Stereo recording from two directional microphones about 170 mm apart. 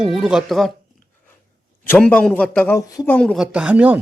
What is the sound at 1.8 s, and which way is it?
A man's voice, 10° left (ahead or behind).